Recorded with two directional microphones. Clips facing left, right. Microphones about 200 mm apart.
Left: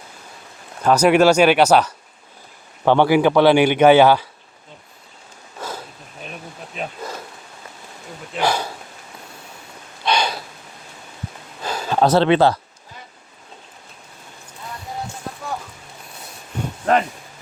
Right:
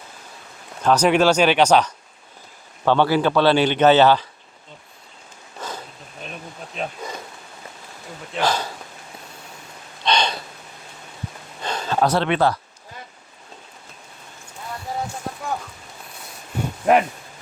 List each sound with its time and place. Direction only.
0.8 s speech: 10° left (ahead or behind)
5.5 s a sound: 10° left (ahead or behind)
8.3 s speech: 10° left (ahead or behind)
10.0 s snort: 10° left (ahead or behind)
11.6 s a sound: 5° left (ahead or behind)
11.9 s speech: 25° left (ahead or behind)